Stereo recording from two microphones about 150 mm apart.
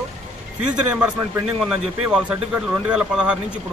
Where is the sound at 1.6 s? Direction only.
5° right (ahead or behind).